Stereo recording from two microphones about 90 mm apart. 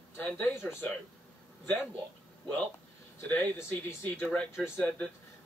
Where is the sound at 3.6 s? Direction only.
30° left (ahead or behind).